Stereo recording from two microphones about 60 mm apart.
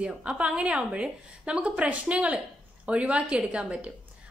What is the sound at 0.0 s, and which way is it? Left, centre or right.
A woman's voice, centre.